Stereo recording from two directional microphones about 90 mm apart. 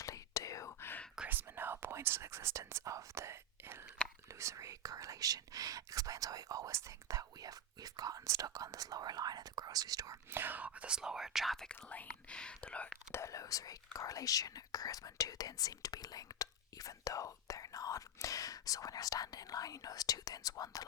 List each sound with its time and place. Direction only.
0.0 s whispering: 40° left (ahead or behind)
1.3 s whispering: 25° right (ahead or behind)
4.3 s speech: 35° right (ahead or behind)
10.3 s speech: 20° right (ahead or behind); by 13.0 s 15° left (ahead or behind)
13.1 s speech: 30° left (ahead or behind)